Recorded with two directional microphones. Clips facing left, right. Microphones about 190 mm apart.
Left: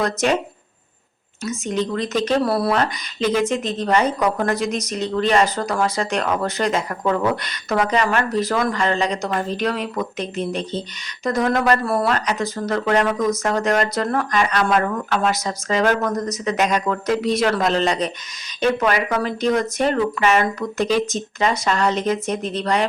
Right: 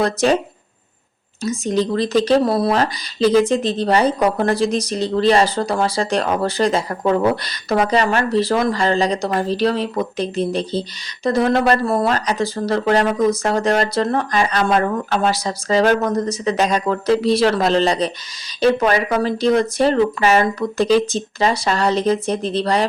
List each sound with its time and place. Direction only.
0.0 s speech: 30° right (ahead or behind)
1.5 s speech: 35° right (ahead or behind)
2.4 s speech: 20° right (ahead or behind)
2.8 s speech: 35° right (ahead or behind)